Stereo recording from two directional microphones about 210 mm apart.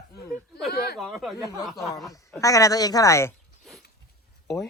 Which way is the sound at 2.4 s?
15° left (ahead or behind).